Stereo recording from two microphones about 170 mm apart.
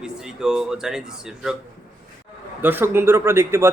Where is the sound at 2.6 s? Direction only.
10° right (ahead or behind).